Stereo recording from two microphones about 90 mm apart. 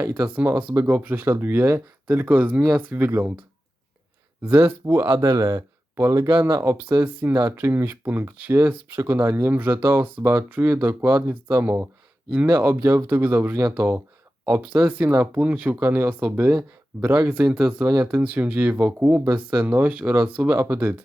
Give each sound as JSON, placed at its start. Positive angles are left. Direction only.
{"t": 0.0, "sound": "speech", "side_deg": -20}
{"t": 4.5, "sound": "speech", "side_deg": -20}
{"t": 5.0, "sound": "speech", "side_deg": -50}
{"t": 5.5, "sound": "a sound", "side_deg": -30}
{"t": 6.6, "sound": "speech", "side_deg": -25}
{"t": 15.0, "sound": "speech", "side_deg": -30}
{"t": 15.4, "sound": "speech", "side_deg": -15}